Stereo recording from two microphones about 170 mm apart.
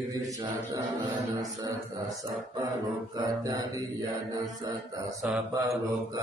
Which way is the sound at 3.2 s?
20° right (ahead or behind).